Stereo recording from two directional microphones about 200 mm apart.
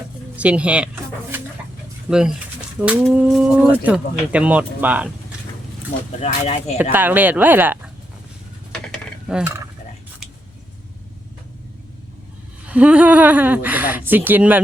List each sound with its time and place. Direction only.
0.3 s speech: 5° right (ahead or behind)
2.0 s speech: 5° right (ahead or behind)
6.1 s speech: 35° left (ahead or behind)
6.9 s speech: 10° right (ahead or behind)
8.7 s a sound: 5° left (ahead or behind)
12.6 s speech: 5° right (ahead or behind)